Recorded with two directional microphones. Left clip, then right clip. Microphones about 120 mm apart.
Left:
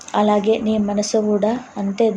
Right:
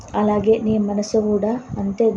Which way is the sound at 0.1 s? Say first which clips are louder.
Left 1 dB; 25° left (ahead or behind).